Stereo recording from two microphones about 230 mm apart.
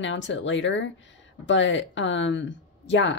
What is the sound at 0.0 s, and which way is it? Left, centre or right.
Speech, left.